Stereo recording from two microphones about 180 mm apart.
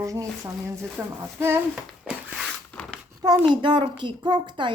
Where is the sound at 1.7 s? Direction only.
Centre (ahead or behind).